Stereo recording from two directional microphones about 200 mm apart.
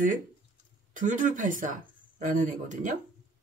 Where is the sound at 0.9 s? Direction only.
40° right (ahead or behind).